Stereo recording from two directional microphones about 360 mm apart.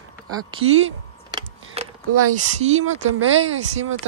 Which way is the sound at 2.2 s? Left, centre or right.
Right.